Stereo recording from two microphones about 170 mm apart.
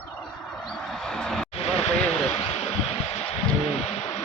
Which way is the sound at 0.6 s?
Centre (ahead or behind).